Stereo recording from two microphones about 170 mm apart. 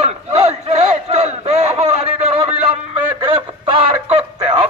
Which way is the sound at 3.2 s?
30° right (ahead or behind).